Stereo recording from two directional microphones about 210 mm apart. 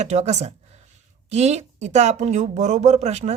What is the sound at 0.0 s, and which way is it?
Speech, 30° right (ahead or behind).